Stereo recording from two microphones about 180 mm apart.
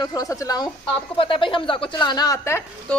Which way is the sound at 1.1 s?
30° left (ahead or behind).